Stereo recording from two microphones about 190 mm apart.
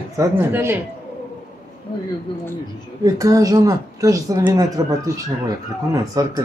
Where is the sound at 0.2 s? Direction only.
15° right (ahead or behind).